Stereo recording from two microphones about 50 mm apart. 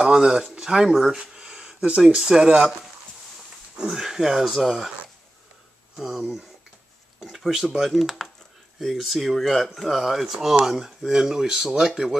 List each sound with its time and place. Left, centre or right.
0.0 s speech: centre
1.1 s a sound: centre
2.1 s speech: centre
3.7 s speech: centre
5.9 s speech: centre